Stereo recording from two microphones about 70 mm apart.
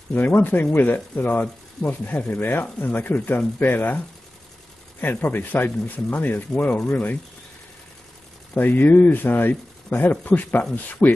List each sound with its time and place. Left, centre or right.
0.1 s speech: left
5.0 s speech: left
8.5 s speech: left